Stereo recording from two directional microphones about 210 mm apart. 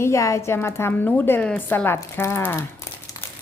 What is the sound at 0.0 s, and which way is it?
A woman's voice, 15° left (ahead or behind).